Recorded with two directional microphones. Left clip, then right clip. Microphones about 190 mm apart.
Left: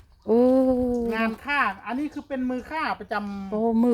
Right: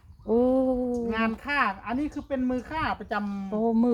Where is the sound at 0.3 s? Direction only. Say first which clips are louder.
Left 4 dB; 30° left (ahead or behind).